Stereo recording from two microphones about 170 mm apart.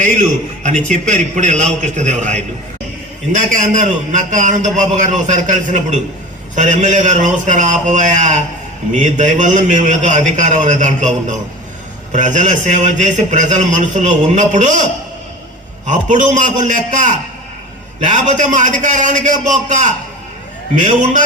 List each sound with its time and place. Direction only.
0.0 s a man's voice: 45° right (ahead or behind)
15.9 s a man's voice: 45° right (ahead or behind)